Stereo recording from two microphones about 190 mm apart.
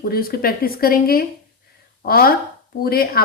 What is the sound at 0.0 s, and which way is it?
Speech, 50° left (ahead or behind).